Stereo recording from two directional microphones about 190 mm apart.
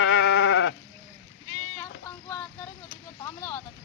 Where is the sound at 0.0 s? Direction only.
85° left.